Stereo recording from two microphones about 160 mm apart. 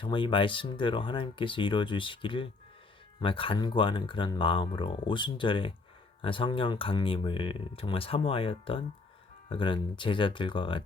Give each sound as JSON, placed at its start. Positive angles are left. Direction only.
{"t": 0.0, "sound": "speech", "side_deg": 30}